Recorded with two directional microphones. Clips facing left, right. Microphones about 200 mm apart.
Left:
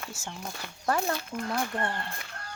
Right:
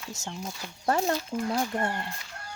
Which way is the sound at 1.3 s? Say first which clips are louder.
Right 4 dB; 35° right (ahead or behind).